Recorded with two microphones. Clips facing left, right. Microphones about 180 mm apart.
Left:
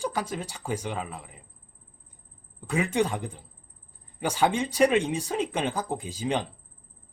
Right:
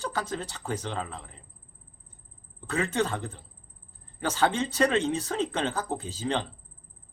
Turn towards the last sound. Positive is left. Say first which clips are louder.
# left 1 dB
turn(degrees=10)  # may be behind; listen again after turning